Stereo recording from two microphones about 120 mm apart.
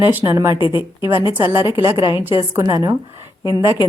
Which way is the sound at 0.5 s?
45° left (ahead or behind).